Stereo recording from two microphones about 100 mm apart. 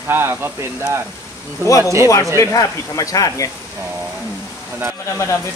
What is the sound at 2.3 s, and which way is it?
Speech, 30° left (ahead or behind).